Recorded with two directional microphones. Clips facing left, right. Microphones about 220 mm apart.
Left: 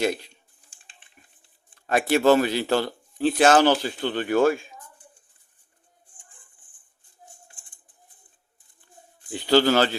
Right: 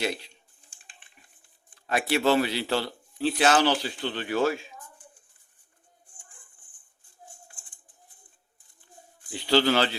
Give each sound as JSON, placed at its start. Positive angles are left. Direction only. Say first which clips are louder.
{"t": 0.0, "sound": "speech", "louder": "left 5 dB", "side_deg": 45}
{"t": 1.9, "sound": "speech", "louder": "left 5 dB", "side_deg": 50}
{"t": 9.3, "sound": "speech", "louder": "left 4 dB", "side_deg": 45}